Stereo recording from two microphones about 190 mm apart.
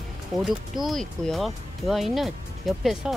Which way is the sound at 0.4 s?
Centre (ahead or behind).